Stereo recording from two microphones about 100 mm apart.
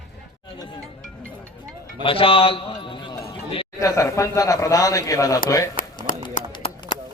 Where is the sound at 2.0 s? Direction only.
65° left (ahead or behind).